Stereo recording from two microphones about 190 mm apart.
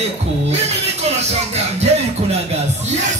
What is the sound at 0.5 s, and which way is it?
Music, 35° right (ahead or behind).